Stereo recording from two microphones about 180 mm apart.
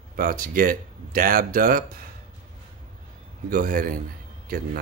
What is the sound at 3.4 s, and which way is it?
Speech, 50° right (ahead or behind).